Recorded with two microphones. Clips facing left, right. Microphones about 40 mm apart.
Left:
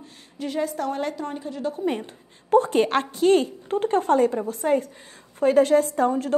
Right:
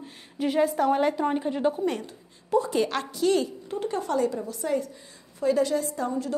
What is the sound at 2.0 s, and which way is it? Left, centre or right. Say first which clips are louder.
A woman's voice: left 6 dB; left.